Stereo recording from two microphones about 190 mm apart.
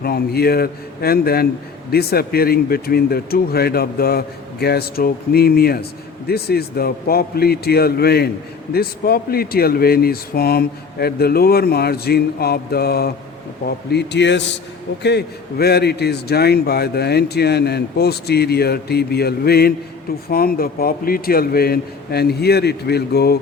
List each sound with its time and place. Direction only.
0.0 s a man's voice: 55° left (ahead or behind)